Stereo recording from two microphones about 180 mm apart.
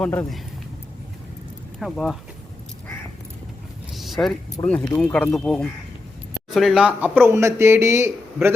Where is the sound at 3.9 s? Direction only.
Centre (ahead or behind).